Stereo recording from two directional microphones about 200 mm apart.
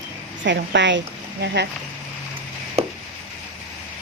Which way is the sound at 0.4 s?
60° right (ahead or behind).